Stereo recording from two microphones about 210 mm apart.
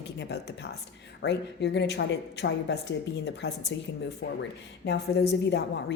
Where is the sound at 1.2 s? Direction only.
55° left (ahead or behind).